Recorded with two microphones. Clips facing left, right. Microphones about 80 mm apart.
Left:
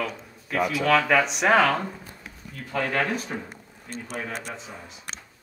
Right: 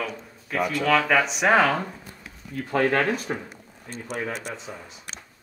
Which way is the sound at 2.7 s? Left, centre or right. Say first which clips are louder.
Right 4 dB; right.